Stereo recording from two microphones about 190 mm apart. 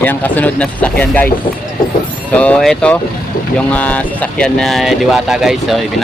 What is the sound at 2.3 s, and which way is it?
Speech, 5° left (ahead or behind).